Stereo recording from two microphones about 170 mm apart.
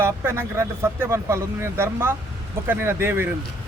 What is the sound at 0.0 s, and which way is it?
Speech, 15° right (ahead or behind).